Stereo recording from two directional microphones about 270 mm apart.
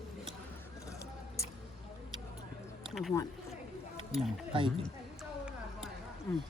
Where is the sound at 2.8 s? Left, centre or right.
Centre.